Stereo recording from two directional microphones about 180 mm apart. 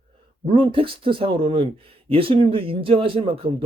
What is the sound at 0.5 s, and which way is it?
Speech, 30° right (ahead or behind).